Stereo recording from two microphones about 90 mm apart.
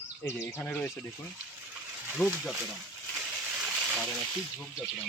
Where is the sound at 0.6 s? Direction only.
15° left (ahead or behind).